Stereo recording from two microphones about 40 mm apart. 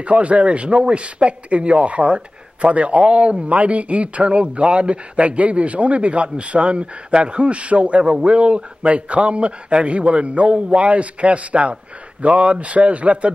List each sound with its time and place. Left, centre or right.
0.0 s a man's voice: right